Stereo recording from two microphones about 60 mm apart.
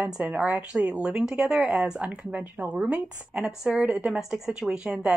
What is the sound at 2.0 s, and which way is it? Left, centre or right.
Speech, right.